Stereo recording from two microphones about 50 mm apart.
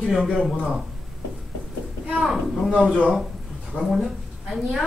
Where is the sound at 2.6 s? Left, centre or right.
Centre.